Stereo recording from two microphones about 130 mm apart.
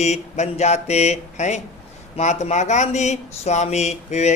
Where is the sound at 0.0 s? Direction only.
60° left (ahead or behind).